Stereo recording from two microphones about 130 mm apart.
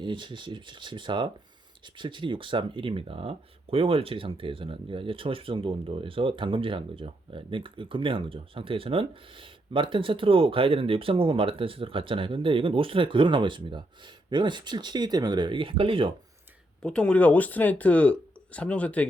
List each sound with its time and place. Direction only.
0.0 s speech: 40° right (ahead or behind)
16.8 s speech: 10° left (ahead or behind)